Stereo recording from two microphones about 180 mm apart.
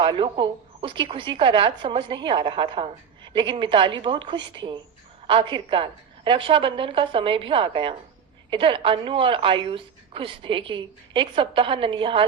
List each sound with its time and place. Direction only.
0.0 s a woman's voice: 25° right (ahead or behind)